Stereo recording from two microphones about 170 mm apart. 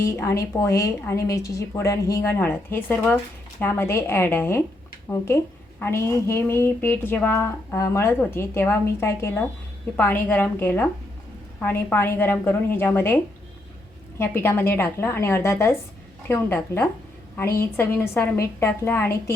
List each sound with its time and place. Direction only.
0.0 s a woman's voice: 15° left (ahead or behind)